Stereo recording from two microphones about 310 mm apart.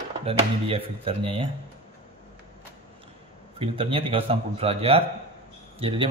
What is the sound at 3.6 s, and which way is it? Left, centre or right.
A man's voice, centre.